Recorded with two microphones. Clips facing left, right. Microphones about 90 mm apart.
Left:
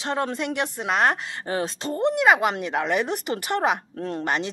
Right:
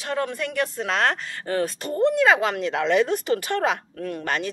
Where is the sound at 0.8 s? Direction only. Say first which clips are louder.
Left 3 dB; 10° left (ahead or behind).